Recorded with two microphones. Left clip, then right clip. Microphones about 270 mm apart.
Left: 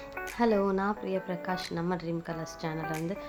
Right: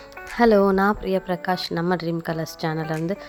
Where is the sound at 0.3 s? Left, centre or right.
Right.